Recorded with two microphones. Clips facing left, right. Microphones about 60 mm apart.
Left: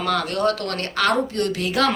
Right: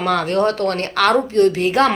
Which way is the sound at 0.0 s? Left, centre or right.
Right.